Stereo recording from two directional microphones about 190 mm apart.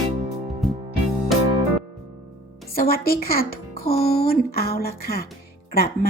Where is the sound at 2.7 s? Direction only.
50° left (ahead or behind).